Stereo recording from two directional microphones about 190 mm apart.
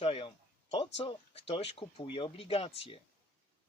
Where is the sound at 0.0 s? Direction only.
30° left (ahead or behind).